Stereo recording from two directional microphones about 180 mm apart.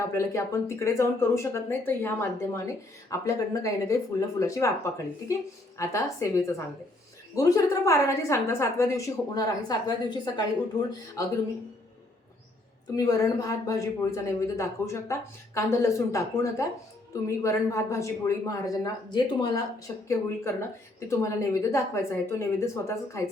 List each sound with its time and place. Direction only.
0.1 s speech: 15° left (ahead or behind)
13.0 s speech: 20° left (ahead or behind)